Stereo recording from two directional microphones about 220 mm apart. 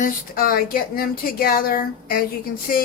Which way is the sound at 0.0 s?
40° left (ahead or behind).